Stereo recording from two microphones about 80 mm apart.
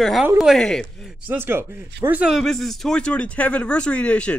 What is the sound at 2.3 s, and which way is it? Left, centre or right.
Speech, centre.